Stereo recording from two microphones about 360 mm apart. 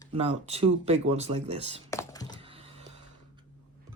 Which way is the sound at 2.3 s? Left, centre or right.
Centre.